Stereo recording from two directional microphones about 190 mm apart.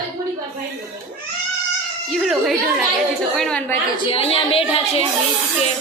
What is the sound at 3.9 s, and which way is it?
Speech, 30° left (ahead or behind).